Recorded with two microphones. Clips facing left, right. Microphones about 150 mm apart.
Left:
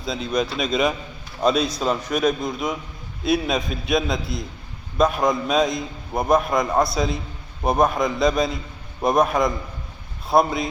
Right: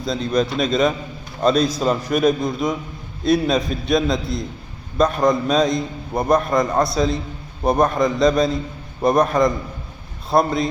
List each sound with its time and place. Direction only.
0.0 s a man's voice: 5° left (ahead or behind)